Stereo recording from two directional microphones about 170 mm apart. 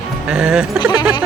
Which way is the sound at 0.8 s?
25° left (ahead or behind).